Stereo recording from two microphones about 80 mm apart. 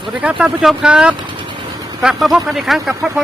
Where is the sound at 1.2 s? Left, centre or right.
Right.